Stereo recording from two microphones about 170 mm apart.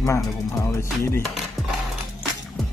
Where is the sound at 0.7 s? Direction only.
15° left (ahead or behind).